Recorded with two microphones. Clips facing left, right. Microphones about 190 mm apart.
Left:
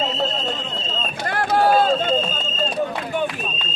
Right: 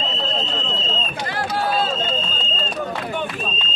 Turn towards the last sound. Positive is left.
turn(degrees=50)  # may be behind; listen again after turning